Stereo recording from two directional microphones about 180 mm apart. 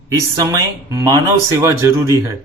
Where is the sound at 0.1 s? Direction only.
20° right (ahead or behind).